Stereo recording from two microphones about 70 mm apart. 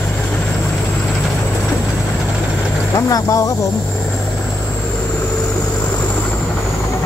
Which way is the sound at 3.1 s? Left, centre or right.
Left.